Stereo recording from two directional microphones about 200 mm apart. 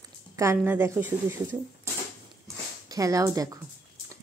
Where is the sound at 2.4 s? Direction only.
15° right (ahead or behind).